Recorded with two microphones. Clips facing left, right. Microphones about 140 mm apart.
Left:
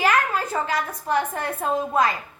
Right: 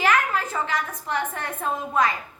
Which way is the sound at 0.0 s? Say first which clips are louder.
Left 1 dB; 35° left (ahead or behind).